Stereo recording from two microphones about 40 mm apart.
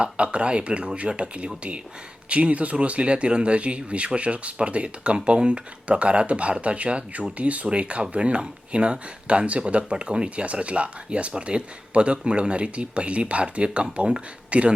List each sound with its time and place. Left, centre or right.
0.0 s speech: right